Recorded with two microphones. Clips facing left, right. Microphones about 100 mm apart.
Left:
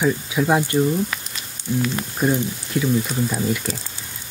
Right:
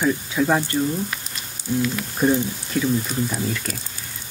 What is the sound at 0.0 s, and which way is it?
Speech, 10° left (ahead or behind).